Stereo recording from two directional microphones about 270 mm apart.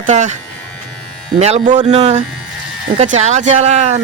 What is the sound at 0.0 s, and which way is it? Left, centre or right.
Speech, right.